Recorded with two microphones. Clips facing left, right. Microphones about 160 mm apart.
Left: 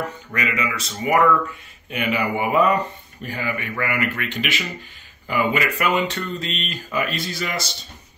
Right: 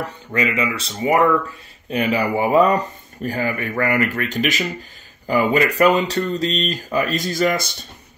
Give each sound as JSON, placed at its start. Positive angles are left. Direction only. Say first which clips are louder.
{"t": 0.0, "sound": "speech", "louder": "right 4 dB", "side_deg": -30}